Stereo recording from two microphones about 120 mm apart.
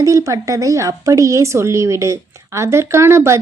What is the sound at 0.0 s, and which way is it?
A woman's voice, 25° right (ahead or behind).